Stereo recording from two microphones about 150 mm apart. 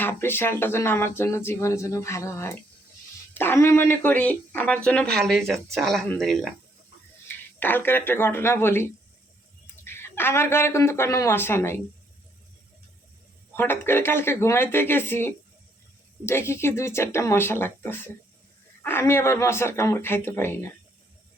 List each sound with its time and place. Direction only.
0.0 s speech: 15° left (ahead or behind)
7.3 s speech: 10° left (ahead or behind)
13.6 s speech: 15° left (ahead or behind)